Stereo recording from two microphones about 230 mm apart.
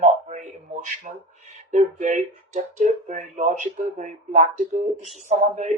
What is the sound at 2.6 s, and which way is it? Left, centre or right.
Speech, right.